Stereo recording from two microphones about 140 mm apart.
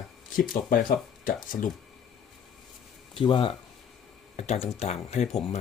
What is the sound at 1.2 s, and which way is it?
Speech, 75° left (ahead or behind).